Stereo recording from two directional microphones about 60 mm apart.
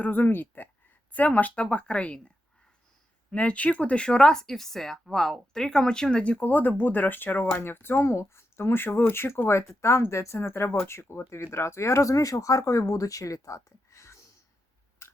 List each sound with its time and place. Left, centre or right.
0.0 s speech: left; by 2.3 s centre
3.3 s speech: left
15.0 s a sound: left